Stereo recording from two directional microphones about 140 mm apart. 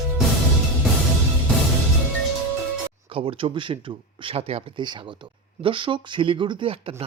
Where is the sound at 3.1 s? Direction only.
40° right (ahead or behind).